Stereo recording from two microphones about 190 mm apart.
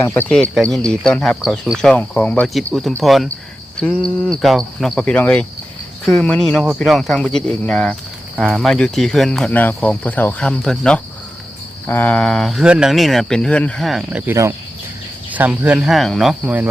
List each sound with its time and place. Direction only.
0.0 s speech: 10° left (ahead or behind)